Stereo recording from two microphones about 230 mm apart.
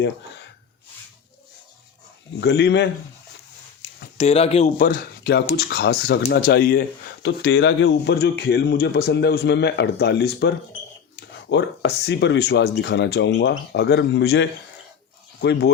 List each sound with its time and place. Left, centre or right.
2.4 s speech: left
4.2 s speech: left